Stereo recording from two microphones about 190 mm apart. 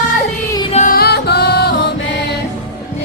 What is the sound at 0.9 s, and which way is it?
Music, 60° left (ahead or behind).